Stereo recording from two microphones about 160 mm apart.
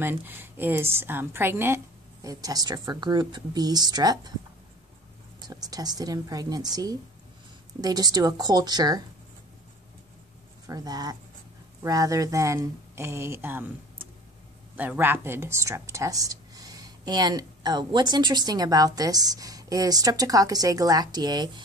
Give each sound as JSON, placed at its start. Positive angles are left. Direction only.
{"t": 0.0, "sound": "a woman's voice", "side_deg": -15}
{"t": 5.5, "sound": "speech", "side_deg": -25}
{"t": 10.7, "sound": "speech", "side_deg": -25}
{"t": 14.8, "sound": "speech", "side_deg": -10}